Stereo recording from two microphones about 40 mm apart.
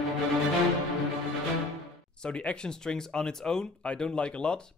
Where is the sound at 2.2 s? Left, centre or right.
Left.